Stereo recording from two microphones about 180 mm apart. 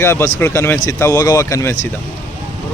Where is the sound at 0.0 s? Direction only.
15° left (ahead or behind).